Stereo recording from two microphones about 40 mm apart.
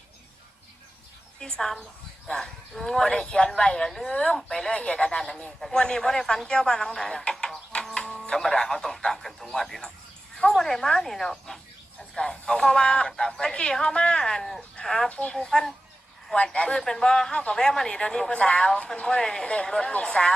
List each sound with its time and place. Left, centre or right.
1.4 s a man's voice: centre
2.7 s a man's voice: centre
4.7 s a man's voice: left; by 7.1 s centre
7.7 s music: left
8.4 s a man's voice: centre
12.1 s a man's voice: centre
16.3 s speech: left